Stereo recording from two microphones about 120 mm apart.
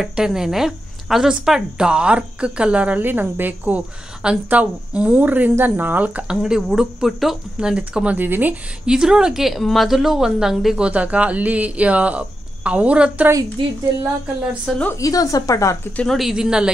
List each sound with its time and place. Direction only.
0.0 s speech: 5° right (ahead or behind)
15.0 s speech: 30° left (ahead or behind)
16.0 s speech: centre (ahead or behind)